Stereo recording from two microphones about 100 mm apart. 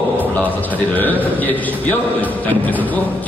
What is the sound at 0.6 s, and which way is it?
A man's voice, 15° left (ahead or behind).